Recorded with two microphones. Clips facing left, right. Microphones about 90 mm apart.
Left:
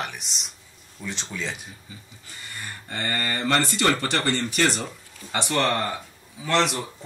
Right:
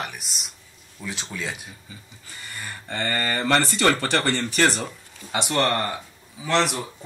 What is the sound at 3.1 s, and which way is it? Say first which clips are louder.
Speech: right 2 dB; 40° right (ahead or behind).